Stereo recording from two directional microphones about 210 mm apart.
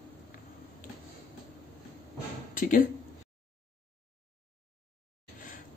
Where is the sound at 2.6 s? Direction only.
40° left (ahead or behind).